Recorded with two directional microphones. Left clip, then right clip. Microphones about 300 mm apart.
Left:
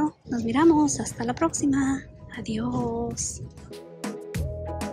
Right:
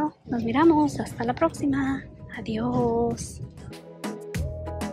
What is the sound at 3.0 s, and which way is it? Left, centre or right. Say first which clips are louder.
Music: right 3 dB; centre.